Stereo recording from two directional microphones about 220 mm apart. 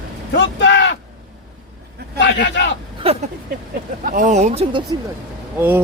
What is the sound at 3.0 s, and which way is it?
Speech, 25° right (ahead or behind).